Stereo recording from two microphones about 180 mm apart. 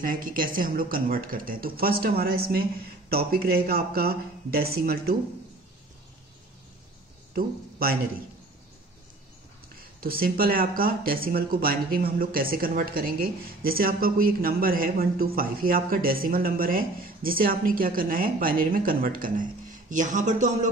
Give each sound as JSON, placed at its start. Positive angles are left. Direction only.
{"t": 0.0, "sound": "speech", "side_deg": -50}
{"t": 9.9, "sound": "speech", "side_deg": -55}